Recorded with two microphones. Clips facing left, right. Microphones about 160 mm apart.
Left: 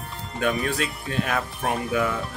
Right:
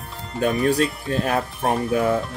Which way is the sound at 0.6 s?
35° right (ahead or behind).